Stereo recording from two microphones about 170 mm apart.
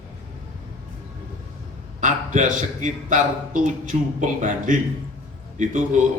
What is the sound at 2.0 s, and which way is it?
A man's voice, 45° right (ahead or behind).